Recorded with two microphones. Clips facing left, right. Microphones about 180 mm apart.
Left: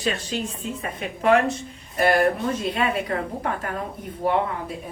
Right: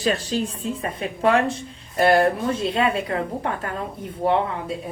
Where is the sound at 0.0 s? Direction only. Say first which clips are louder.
Right 4 dB; 35° right (ahead or behind).